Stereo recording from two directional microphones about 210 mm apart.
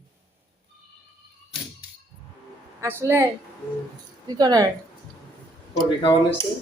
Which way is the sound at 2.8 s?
10° right (ahead or behind).